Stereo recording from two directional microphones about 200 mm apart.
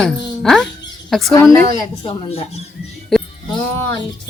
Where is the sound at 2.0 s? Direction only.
30° left (ahead or behind).